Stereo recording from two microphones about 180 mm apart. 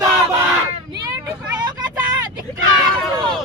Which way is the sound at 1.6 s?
25° right (ahead or behind).